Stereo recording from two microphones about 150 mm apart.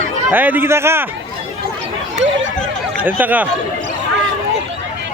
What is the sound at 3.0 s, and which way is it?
Speech, 10° right (ahead or behind).